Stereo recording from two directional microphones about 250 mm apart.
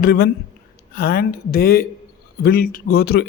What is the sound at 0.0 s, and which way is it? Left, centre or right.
Speech, left.